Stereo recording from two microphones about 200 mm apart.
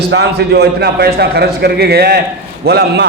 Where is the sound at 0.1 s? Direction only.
55° right (ahead or behind).